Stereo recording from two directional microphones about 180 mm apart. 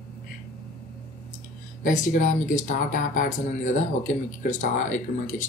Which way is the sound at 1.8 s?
45° left (ahead or behind).